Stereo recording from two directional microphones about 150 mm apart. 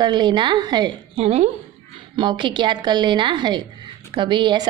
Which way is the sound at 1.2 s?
45° right (ahead or behind).